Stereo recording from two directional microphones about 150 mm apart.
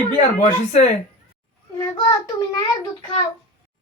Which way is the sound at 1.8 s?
25° left (ahead or behind).